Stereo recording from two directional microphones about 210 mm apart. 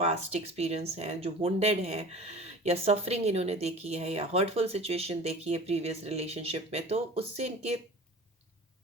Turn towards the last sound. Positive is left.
turn(degrees=-30)  # may be behind; listen again after turning